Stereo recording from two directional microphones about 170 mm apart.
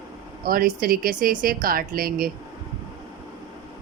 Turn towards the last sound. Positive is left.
turn(degrees=-60)  # may be behind; listen again after turning